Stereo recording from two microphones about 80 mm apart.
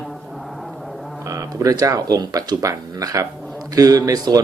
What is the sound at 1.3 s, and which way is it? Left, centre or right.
Speech, right.